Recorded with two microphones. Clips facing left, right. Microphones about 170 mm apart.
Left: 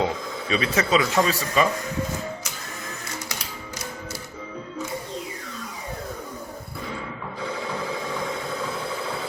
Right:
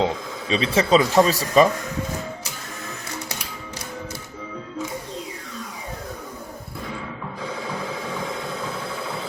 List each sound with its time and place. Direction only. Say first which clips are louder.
0.0 s speech: right 2 dB; 25° right (ahead or behind)